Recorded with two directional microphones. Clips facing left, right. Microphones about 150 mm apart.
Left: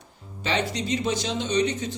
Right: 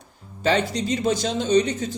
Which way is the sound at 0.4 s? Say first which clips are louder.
Right 5 dB; 45° right (ahead or behind).